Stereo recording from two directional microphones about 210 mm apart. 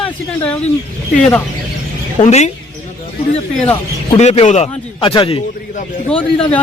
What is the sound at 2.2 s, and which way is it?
Speech, 35° left (ahead or behind).